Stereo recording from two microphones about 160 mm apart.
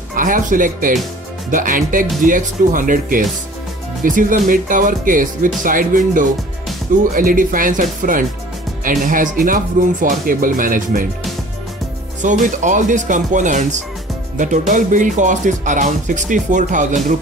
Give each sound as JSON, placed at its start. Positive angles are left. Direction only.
{"t": 0.1, "sound": "speech", "side_deg": -55}
{"t": 12.2, "sound": "speech", "side_deg": -50}